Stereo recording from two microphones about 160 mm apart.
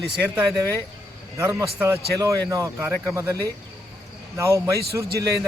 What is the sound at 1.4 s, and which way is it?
A man's voice, 15° right (ahead or behind).